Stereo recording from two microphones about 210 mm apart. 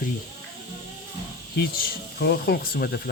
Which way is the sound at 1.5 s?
45° left (ahead or behind).